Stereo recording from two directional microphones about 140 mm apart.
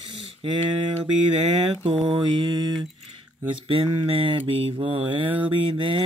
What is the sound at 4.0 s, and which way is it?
Speech, 40° right (ahead or behind).